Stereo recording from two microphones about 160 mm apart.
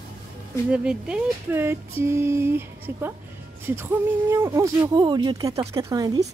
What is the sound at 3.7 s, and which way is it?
Speech, 15° right (ahead or behind).